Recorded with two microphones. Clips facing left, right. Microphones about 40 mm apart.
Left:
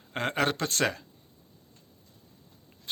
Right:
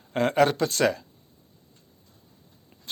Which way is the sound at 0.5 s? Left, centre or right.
Left.